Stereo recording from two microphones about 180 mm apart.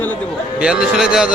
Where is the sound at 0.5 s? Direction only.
5° right (ahead or behind).